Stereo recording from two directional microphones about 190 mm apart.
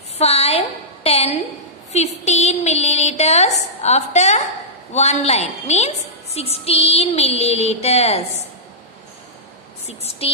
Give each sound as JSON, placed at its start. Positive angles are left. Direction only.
{"t": 0.2, "sound": "a sound", "side_deg": 35}
{"t": 1.9, "sound": "a woman's voice", "side_deg": 35}
{"t": 9.8, "sound": "a woman's voice", "side_deg": 30}